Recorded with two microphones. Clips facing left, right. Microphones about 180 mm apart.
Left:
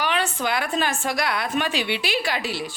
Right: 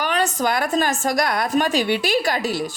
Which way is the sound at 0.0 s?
40° right (ahead or behind).